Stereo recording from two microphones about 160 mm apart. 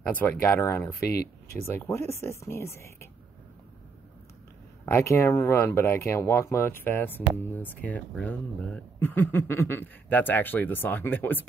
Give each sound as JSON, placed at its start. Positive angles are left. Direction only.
{"t": 0.1, "sound": "speech", "side_deg": 10}
{"t": 1.0, "sound": "speech", "side_deg": 75}
{"t": 1.6, "sound": "speech", "side_deg": 15}
{"t": 4.8, "sound": "speech", "side_deg": 15}